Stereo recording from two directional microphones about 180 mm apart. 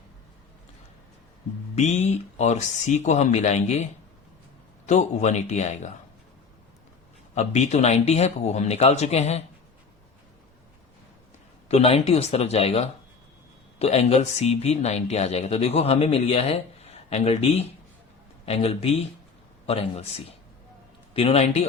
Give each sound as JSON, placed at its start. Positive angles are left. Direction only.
{"t": 1.7, "sound": "speech", "side_deg": 40}
{"t": 4.9, "sound": "speech", "side_deg": 40}
{"t": 7.3, "sound": "speech", "side_deg": 40}
{"t": 11.7, "sound": "speech", "side_deg": 35}
{"t": 21.1, "sound": "speech", "side_deg": 35}